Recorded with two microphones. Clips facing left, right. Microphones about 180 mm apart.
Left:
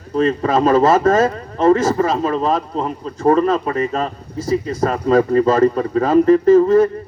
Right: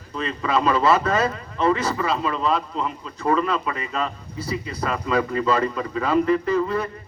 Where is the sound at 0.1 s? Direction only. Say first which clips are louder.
Left 8 dB; 45° left (ahead or behind).